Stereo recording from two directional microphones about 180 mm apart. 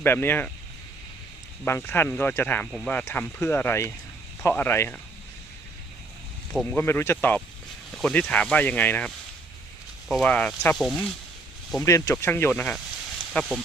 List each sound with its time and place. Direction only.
0.0 s speech: 10° left (ahead or behind)
1.6 s speech: 15° left (ahead or behind)
6.5 s speech: 10° left (ahead or behind)
11.8 s speech: 15° left (ahead or behind)